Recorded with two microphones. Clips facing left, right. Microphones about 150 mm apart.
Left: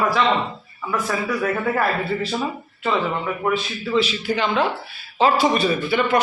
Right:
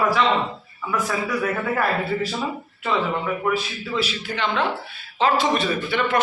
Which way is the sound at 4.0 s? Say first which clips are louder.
Left 5 dB; centre (ahead or behind).